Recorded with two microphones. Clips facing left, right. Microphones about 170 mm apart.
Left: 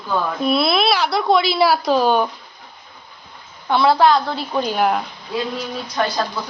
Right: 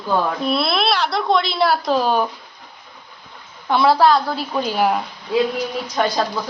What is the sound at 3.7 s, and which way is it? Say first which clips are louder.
A woman's voice: even; 5° right (ahead or behind).